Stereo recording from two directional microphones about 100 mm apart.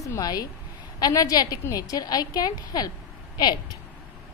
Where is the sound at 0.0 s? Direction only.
35° left (ahead or behind).